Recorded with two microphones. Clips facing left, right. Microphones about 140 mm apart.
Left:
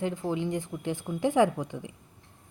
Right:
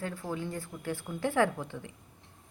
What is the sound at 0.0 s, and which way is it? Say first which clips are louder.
A woman's voice: left 6 dB; 20° left (ahead or behind).